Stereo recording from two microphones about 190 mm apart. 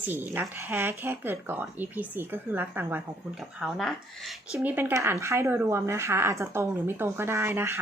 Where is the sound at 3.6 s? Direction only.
Centre (ahead or behind).